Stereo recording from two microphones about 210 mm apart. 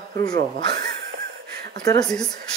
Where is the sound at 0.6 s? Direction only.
20° left (ahead or behind).